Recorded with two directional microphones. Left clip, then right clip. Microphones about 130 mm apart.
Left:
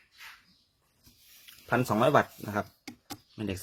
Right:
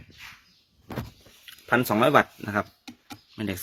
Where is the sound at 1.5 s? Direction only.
15° right (ahead or behind).